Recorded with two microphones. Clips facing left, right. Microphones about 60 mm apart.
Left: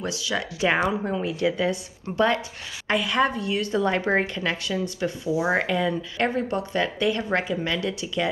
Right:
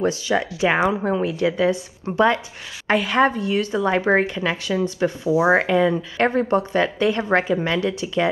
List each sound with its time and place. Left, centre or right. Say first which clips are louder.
0.0 s speech: right 7 dB; right
3.7 s speech: right 3 dB; centre
6.1 s speech: right 6 dB; right